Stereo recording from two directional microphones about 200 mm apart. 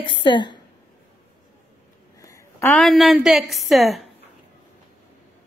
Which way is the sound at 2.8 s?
Centre (ahead or behind).